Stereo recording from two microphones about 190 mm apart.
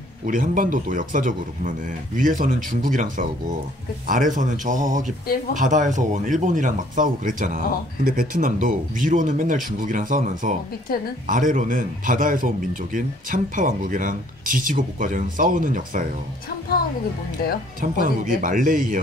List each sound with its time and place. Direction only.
0.3 s speech: 45° right (ahead or behind)
18.0 s speech: 45° right (ahead or behind)